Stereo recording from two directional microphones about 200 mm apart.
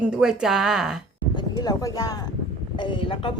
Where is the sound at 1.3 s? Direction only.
20° left (ahead or behind).